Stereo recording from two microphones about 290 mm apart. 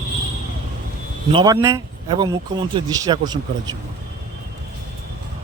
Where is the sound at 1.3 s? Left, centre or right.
Centre.